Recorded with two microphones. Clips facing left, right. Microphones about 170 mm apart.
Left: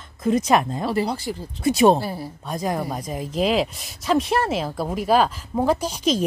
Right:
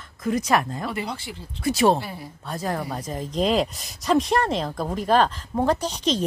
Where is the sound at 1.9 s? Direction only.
35° left (ahead or behind).